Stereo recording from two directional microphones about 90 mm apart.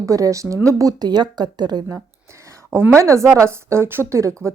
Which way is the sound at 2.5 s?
30° right (ahead or behind).